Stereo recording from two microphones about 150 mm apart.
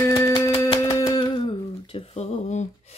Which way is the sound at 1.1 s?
35° left (ahead or behind).